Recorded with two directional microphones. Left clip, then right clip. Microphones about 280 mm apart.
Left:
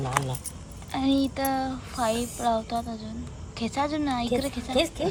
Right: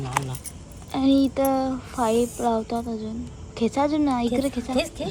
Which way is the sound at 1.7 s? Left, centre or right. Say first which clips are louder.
Right 4 dB; left.